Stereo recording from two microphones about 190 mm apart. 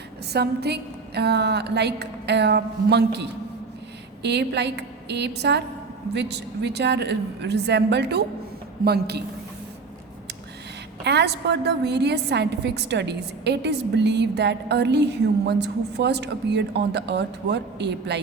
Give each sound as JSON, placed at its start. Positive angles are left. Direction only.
{"t": 0.3, "sound": "a woman's voice", "side_deg": -60}
{"t": 11.0, "sound": "a woman's voice", "side_deg": -65}